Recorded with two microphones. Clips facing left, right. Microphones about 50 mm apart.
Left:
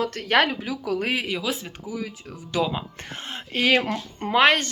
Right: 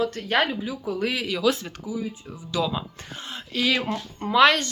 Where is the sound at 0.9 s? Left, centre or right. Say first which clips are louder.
Left 1 dB; left.